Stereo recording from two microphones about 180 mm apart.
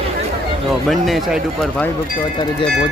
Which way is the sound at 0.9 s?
Centre (ahead or behind).